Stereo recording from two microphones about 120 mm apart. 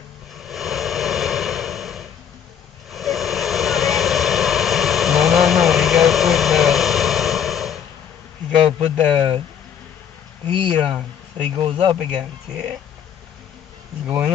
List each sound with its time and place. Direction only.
0.4 s a sound: centre (ahead or behind)
2.9 s vehicle: centre (ahead or behind)
8.6 s speech: 55° right (ahead or behind)
10.4 s speech: 45° right (ahead or behind)
14.0 s speech: 15° right (ahead or behind)